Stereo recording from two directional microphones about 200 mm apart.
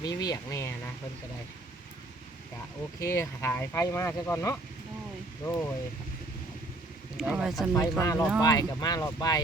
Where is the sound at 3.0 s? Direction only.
15° left (ahead or behind).